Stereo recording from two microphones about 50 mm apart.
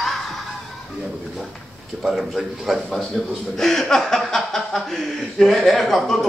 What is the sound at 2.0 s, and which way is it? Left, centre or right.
A man's voice, centre.